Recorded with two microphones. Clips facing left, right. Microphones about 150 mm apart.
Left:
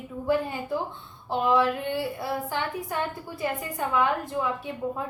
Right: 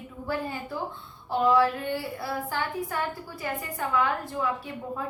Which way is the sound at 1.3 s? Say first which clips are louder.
Right 1 dB; 20° left (ahead or behind).